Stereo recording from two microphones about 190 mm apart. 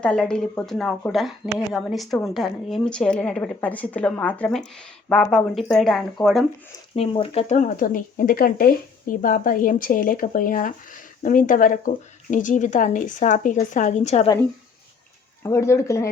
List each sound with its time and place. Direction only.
0.0 s a woman's voice: 5° left (ahead or behind)
6.9 s speech: 30° left (ahead or behind)
15.4 s speech: 15° left (ahead or behind)